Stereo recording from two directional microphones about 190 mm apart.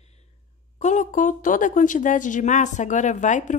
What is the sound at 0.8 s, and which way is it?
Speech, 40° left (ahead or behind).